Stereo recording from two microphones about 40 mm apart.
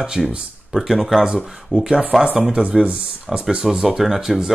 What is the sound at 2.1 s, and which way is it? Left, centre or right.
Speech, centre.